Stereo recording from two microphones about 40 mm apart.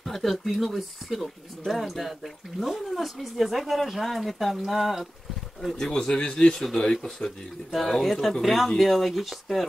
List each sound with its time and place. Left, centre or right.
0.0 s speech: centre
5.8 s a man's voice: centre